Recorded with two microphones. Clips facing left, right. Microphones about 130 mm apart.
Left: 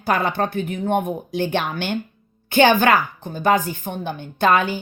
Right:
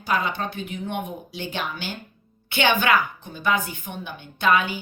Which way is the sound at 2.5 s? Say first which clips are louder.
Left 6 dB; 45° left (ahead or behind).